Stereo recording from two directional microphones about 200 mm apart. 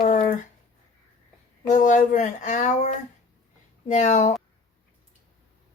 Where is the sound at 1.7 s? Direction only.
40° left (ahead or behind).